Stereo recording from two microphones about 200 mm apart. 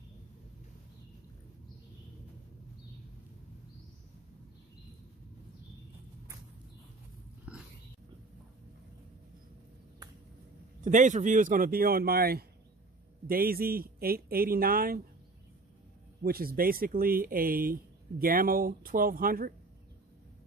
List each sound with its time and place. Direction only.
7.5 s dog: 5° right (ahead or behind)
10.8 s speech: 40° right (ahead or behind)
16.2 s speech: 50° right (ahead or behind)